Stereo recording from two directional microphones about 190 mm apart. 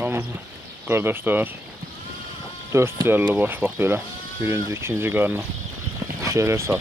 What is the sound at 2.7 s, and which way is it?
Speech, 15° right (ahead or behind).